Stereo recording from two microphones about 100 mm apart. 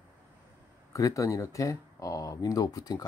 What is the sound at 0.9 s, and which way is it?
Speech, 35° left (ahead or behind).